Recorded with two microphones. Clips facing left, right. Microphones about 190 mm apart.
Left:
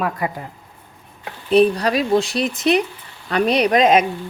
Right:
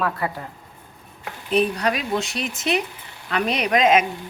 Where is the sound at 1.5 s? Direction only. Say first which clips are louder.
Left 6 dB; 35° left (ahead or behind).